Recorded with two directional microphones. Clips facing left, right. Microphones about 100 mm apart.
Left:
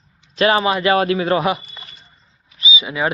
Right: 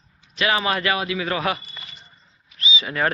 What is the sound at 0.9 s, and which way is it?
Speech, 45° left (ahead or behind).